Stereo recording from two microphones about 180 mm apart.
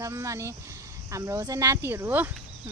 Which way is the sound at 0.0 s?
15° right (ahead or behind).